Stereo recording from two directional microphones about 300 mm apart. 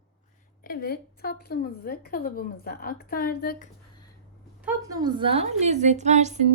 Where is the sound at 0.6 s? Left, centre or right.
Left.